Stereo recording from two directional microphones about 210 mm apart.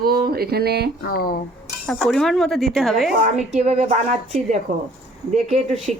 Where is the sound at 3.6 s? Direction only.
30° right (ahead or behind).